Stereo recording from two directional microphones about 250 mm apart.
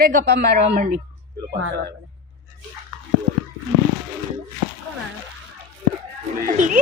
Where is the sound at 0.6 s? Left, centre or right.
Right.